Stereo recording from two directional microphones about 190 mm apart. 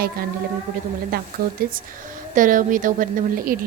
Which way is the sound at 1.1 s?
55° right (ahead or behind).